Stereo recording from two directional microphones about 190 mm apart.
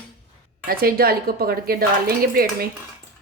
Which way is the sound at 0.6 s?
50° right (ahead or behind).